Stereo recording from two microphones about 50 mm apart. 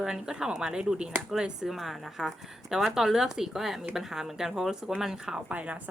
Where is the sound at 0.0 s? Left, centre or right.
Centre.